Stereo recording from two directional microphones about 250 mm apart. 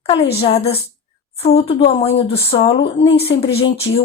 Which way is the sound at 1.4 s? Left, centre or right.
Left.